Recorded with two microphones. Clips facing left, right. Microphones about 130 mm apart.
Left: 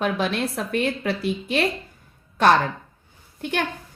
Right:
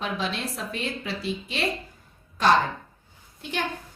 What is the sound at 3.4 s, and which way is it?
Speech, 60° left (ahead or behind).